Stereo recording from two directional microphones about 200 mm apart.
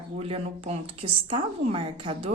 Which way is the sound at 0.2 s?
30° right (ahead or behind).